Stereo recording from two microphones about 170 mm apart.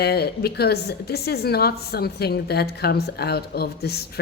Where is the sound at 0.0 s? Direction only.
70° left (ahead or behind).